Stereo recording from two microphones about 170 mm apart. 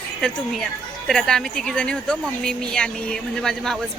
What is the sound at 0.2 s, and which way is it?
Speech, centre (ahead or behind).